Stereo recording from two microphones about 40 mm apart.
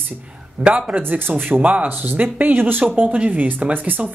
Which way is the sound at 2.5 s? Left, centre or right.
Right.